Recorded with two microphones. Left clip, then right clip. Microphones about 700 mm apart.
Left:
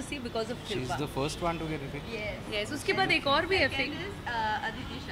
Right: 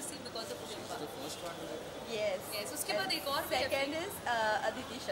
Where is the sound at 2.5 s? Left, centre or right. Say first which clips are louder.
Left 6 dB; left.